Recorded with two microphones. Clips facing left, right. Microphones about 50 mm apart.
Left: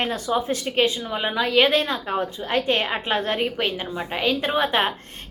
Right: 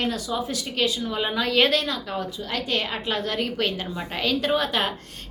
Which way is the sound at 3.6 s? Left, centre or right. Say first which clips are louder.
Left 1 dB; centre.